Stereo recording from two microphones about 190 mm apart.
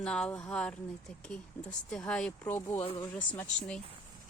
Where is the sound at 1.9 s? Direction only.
5° left (ahead or behind).